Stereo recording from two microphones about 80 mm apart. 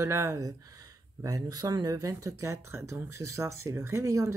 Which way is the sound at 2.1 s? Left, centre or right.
Right.